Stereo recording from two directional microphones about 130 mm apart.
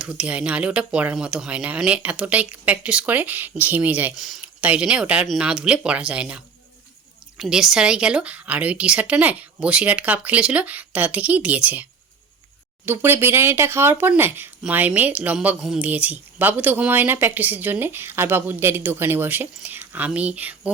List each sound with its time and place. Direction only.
0.0 s speech: 10° right (ahead or behind)